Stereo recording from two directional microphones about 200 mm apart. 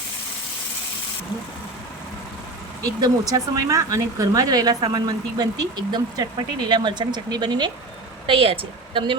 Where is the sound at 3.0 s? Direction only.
15° right (ahead or behind).